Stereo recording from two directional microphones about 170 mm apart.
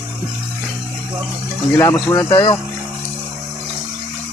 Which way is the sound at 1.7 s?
20° left (ahead or behind).